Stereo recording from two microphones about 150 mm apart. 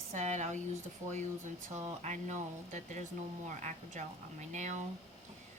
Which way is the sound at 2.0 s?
50° right (ahead or behind).